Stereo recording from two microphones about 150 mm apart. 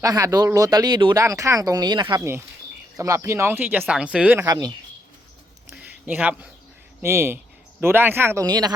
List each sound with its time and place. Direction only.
0.0 s speech: 25° right (ahead or behind)
4.4 s speech: 25° right (ahead or behind)
5.7 s a sound: 10° right (ahead or behind)
7.0 s speech: 15° right (ahead or behind)
8.4 s speech: 25° right (ahead or behind)